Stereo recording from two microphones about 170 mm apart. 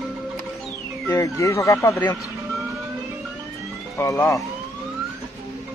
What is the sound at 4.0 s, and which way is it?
Speech, 15° left (ahead or behind).